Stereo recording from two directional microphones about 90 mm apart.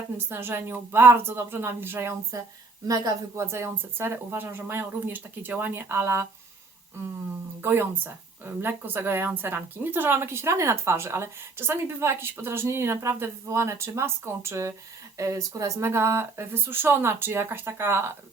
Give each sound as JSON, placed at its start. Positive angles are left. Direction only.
{"t": 0.3, "sound": "speech", "side_deg": -25}
{"t": 2.8, "sound": "a woman's voice", "side_deg": -40}
{"t": 3.4, "sound": "speech", "side_deg": -30}
{"t": 7.6, "sound": "speech", "side_deg": -25}